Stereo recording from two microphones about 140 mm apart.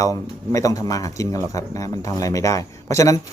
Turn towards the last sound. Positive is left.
turn(degrees=25)  # may be behind; listen again after turning